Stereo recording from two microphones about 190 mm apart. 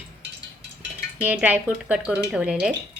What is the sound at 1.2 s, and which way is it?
A woman's voice, 10° right (ahead or behind).